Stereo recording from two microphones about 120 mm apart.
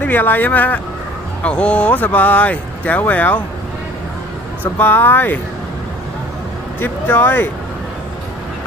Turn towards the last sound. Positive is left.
turn(degrees=15)  # may be behind; listen again after turning